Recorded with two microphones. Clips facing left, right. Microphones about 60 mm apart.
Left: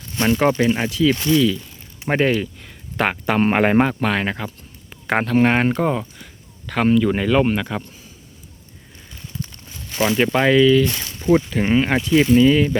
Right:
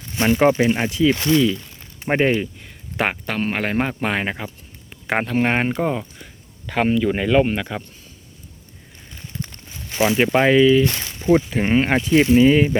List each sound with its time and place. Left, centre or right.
0.2 s speech: centre
2.0 s speech: centre
2.4 s a sound: centre
3.3 s speech: left
3.8 s speech: centre
9.6 s a sound: right
10.0 s speech: centre
12.4 s speech: right